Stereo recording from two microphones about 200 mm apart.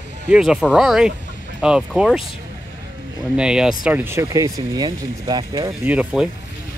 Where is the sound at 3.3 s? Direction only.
5° right (ahead or behind); by 5.7 s 20° right (ahead or behind).